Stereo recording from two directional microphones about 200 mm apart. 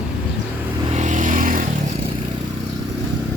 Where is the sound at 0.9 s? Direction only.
35° right (ahead or behind).